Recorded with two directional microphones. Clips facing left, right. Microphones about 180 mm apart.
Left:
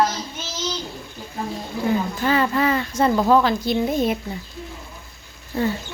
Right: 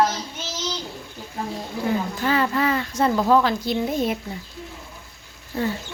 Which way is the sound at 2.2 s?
20° left (ahead or behind).